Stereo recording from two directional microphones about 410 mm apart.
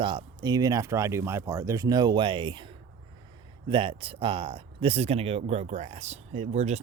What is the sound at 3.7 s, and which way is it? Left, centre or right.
Speech, centre.